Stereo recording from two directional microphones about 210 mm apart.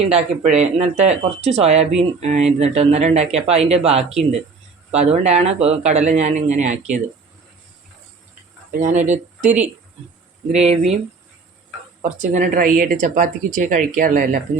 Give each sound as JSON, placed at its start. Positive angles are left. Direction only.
{"t": 0.1, "sound": "speech", "side_deg": -30}
{"t": 8.7, "sound": "speech", "side_deg": -35}
{"t": 12.0, "sound": "speech", "side_deg": -35}